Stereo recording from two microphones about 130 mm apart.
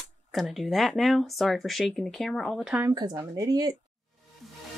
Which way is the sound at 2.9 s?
30° right (ahead or behind).